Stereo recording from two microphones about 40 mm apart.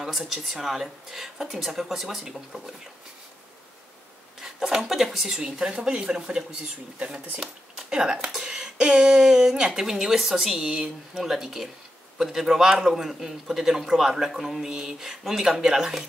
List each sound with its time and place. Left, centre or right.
0.5 s a man's voice: centre
4.4 s speech: centre
5.4 s a man's voice: centre